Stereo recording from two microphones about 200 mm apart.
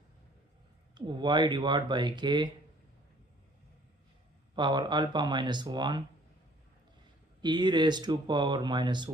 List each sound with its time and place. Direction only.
0.9 s speech: 20° right (ahead or behind)
4.5 s speech: 20° right (ahead or behind)
7.4 s speech: 20° right (ahead or behind)